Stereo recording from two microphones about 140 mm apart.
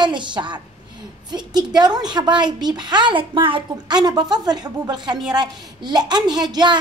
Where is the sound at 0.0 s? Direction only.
35° right (ahead or behind).